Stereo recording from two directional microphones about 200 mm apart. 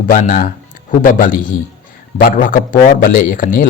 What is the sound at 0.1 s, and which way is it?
Speech, 45° left (ahead or behind).